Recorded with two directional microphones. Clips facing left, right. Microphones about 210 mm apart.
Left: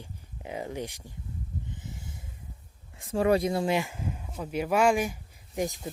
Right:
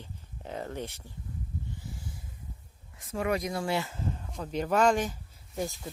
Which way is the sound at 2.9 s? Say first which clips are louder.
Left 6 dB; 30° left (ahead or behind).